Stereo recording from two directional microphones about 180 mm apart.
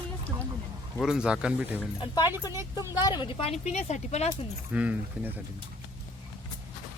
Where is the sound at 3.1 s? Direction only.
25° left (ahead or behind).